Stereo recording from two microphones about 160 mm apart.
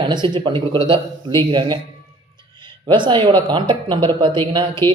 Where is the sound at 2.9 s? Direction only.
30° right (ahead or behind).